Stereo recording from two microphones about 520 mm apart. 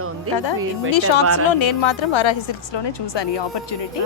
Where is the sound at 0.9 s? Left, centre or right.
Left.